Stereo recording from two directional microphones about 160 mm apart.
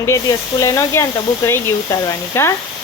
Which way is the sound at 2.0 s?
20° left (ahead or behind).